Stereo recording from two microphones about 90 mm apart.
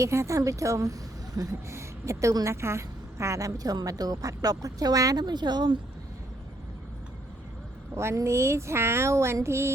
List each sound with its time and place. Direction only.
0.0 s a woman's voice: 35° right (ahead or behind); by 5.7 s 55° right (ahead or behind)
7.9 s a woman's voice: 30° right (ahead or behind)